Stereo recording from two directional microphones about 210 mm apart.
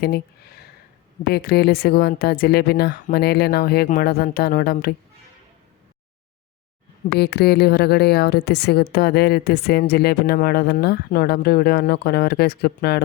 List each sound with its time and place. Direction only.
0.0 s a woman's voice: 45° left (ahead or behind)
7.2 s a woman's voice: 50° left (ahead or behind)